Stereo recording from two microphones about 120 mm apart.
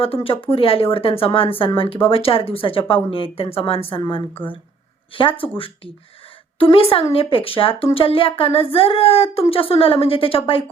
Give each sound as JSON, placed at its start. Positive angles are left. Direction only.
{"t": 0.0, "sound": "speech", "side_deg": 50}